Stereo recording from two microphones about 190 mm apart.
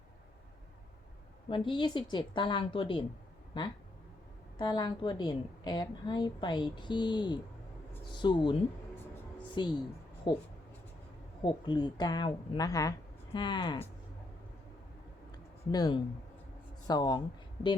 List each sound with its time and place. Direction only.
1.5 s a woman's voice: 25° left (ahead or behind)
11.4 s a woman's voice: 25° left (ahead or behind)
15.7 s a woman's voice: 20° left (ahead or behind)